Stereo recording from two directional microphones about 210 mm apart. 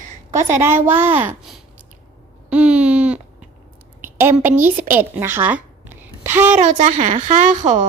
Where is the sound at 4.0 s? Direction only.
10° right (ahead or behind).